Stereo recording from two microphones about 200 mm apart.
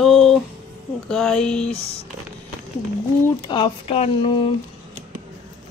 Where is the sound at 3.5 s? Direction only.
25° left (ahead or behind).